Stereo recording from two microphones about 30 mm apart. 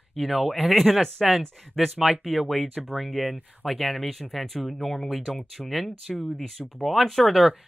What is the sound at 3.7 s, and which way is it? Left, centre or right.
Speech, centre.